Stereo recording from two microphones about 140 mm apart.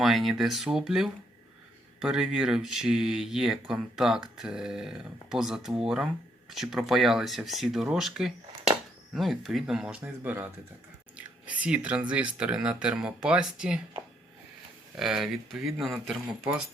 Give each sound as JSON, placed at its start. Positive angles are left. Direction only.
{"t": 0.0, "sound": "speech", "side_deg": 0}
{"t": 14.9, "sound": "speech", "side_deg": 0}